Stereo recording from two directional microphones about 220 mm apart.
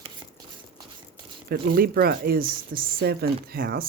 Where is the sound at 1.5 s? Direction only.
45° right (ahead or behind).